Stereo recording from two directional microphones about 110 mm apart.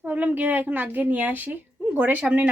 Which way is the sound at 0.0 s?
15° right (ahead or behind).